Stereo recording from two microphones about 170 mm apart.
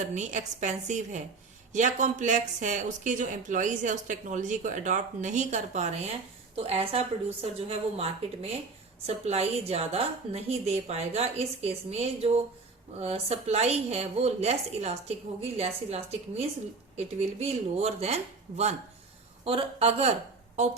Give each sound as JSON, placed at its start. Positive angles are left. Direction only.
{"t": 0.0, "sound": "a woman's voice", "side_deg": -45}